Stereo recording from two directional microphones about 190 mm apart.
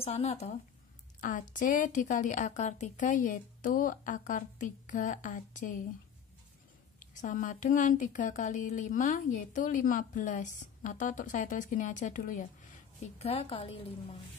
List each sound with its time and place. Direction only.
0.0 s a woman's voice: 35° left (ahead or behind)
7.0 s speech: 45° left (ahead or behind)
13.0 s a woman's voice: 30° left (ahead or behind)